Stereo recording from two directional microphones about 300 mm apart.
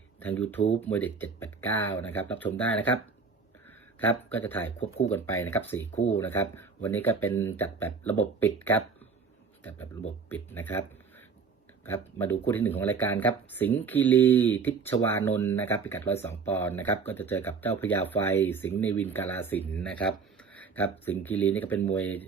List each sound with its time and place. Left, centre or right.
0.2 s speech: centre
4.0 s speech: centre
4.8 s speech: left
5.1 s speech: centre
11.9 s speech: centre